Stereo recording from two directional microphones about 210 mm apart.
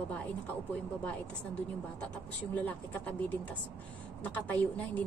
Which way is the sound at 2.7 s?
5° left (ahead or behind).